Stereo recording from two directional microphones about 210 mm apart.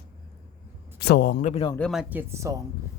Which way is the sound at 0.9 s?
50° left (ahead or behind).